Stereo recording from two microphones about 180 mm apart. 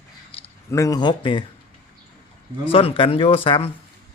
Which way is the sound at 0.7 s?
20° left (ahead or behind).